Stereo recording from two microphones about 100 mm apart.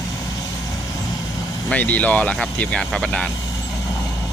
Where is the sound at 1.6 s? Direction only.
15° left (ahead or behind).